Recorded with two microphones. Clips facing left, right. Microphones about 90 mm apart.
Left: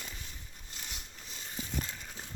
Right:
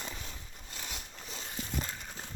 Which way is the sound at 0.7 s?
80° right.